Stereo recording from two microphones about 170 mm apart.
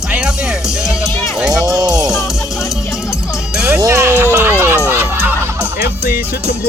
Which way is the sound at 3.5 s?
15° right (ahead or behind).